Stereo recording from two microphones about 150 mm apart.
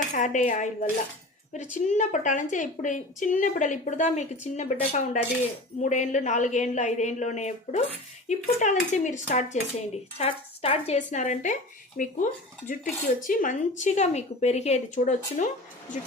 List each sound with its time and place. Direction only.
0.1 s speech: 55° left (ahead or behind)